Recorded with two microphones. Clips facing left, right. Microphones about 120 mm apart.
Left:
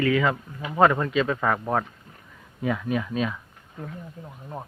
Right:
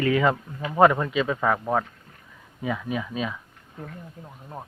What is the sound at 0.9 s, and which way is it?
Speech, 10° right (ahead or behind).